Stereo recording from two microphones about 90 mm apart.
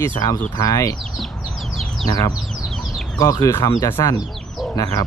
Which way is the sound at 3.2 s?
40° left (ahead or behind).